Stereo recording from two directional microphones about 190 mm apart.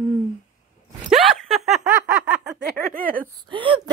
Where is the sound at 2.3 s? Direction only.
50° right (ahead or behind).